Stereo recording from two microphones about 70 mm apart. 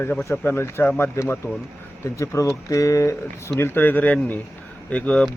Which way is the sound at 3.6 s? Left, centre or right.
Left.